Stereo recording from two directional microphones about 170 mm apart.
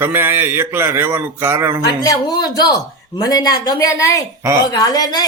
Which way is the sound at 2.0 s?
25° left (ahead or behind).